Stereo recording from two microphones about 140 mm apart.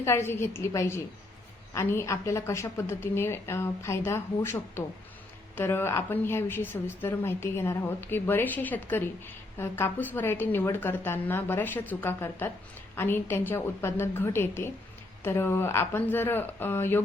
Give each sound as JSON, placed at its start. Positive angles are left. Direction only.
{"t": 0.0, "sound": "a woman's voice", "side_deg": 20}